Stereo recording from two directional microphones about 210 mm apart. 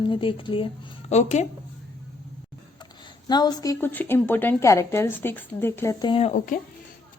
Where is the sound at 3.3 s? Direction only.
20° left (ahead or behind).